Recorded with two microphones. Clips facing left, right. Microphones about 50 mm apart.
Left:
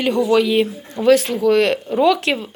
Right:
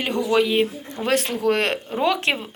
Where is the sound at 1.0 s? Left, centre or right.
Right.